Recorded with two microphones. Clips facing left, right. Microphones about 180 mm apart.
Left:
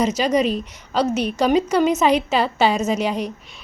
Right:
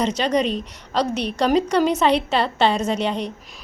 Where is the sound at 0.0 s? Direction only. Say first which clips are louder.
Left 2 dB; 10° left (ahead or behind).